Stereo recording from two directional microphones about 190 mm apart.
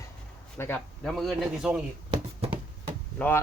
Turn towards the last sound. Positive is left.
turn(degrees=10)  # may be behind; listen again after turning